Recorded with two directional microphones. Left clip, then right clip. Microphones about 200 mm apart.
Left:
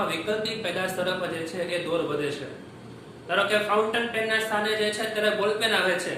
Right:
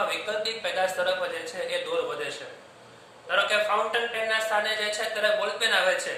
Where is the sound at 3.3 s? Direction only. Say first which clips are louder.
Even; 15° right (ahead or behind).